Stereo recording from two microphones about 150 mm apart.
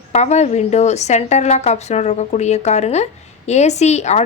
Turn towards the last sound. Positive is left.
turn(degrees=50)  # may be behind; listen again after turning